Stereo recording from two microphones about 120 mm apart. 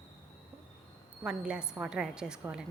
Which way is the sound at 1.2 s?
5° right (ahead or behind).